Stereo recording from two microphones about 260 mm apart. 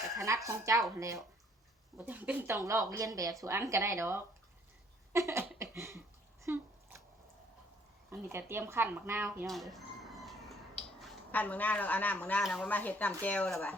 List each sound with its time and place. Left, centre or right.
0.2 s speech: centre
5.1 s a sound: centre
6.4 s bathtub: centre
8.1 s speech: centre